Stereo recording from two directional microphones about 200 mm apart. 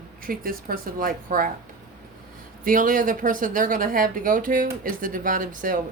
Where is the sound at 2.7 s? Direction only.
45° right (ahead or behind).